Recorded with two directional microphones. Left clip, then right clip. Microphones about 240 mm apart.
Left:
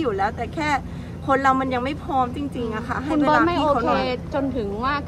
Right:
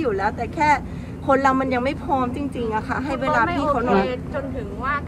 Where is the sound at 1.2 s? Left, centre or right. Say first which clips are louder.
Right 1 dB; centre.